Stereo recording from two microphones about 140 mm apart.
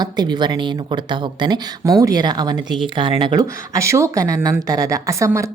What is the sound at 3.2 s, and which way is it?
Speech, 25° right (ahead or behind).